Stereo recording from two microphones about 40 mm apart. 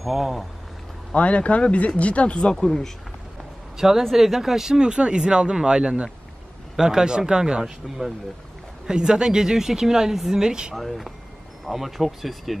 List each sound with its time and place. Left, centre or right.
0.0 s speech: centre
1.1 s speech: left
2.5 s speech: centre
3.7 s speech: centre
4.7 s speech: right
8.8 s speech: centre
10.7 s speech: centre